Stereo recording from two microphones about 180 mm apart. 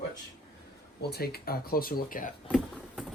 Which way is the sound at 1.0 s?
60° left (ahead or behind).